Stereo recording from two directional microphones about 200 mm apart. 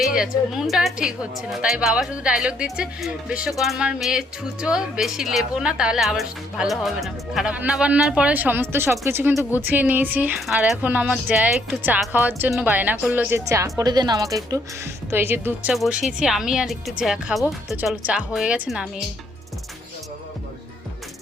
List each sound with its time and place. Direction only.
0.0 s speech: centre (ahead or behind)